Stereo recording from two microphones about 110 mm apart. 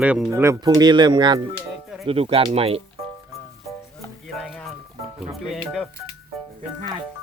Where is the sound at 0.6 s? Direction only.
40° right (ahead or behind).